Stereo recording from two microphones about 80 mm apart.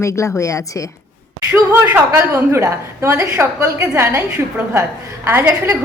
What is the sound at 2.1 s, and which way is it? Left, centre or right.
A woman's voice, right.